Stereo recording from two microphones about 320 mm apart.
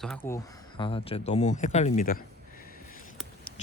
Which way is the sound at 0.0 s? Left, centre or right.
Centre.